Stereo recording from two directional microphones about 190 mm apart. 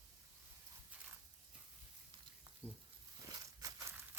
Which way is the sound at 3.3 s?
20° right (ahead or behind).